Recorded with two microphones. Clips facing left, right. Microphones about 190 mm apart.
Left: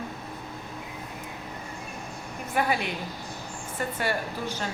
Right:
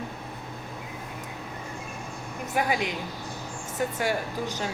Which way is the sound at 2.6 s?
15° right (ahead or behind).